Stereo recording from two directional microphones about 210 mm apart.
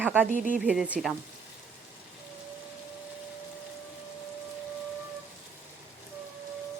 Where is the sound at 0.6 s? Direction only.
5° right (ahead or behind).